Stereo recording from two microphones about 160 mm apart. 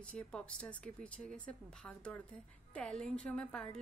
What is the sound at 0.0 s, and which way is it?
A woman's voice, 5° left (ahead or behind).